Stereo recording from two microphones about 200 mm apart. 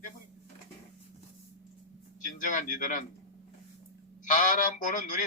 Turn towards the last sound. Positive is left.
turn(degrees=40)  # may be behind; listen again after turning